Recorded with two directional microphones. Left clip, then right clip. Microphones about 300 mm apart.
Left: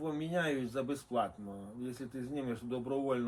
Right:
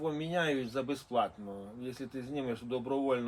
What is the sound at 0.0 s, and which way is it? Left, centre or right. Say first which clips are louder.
Speech: right 2 dB; right.